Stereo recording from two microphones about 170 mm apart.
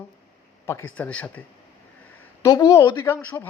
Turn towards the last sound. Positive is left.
turn(degrees=10)  # may be behind; listen again after turning